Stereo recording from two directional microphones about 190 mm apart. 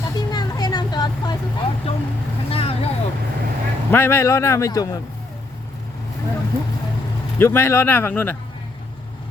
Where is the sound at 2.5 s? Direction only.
30° left (ahead or behind).